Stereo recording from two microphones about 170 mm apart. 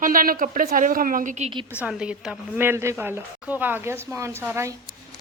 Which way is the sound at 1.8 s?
5° right (ahead or behind).